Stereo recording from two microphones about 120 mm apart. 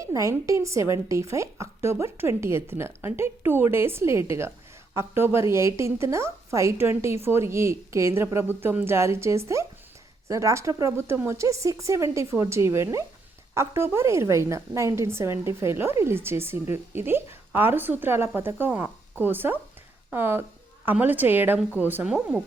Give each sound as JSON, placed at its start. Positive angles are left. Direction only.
{"t": 0.1, "sound": "a woman's voice", "side_deg": -25}